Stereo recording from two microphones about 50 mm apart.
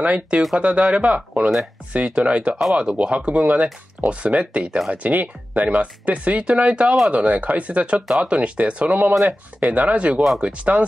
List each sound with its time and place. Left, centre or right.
0.0 s speech: right
4.6 s speech: centre
4.9 s speech: right